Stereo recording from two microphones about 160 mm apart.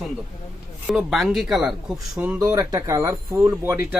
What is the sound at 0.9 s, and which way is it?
Speech, centre (ahead or behind).